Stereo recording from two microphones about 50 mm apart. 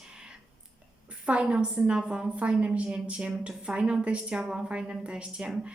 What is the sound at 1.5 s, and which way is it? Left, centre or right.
A woman's voice, right.